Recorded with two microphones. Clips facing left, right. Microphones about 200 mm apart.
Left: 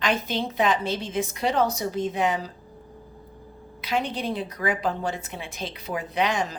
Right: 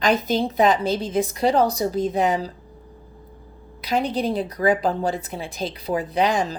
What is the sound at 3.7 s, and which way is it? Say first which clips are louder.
A woman's voice: right 5 dB; 40° right (ahead or behind).